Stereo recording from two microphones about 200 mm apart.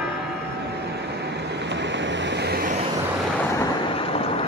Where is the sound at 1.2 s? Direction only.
60° right (ahead or behind).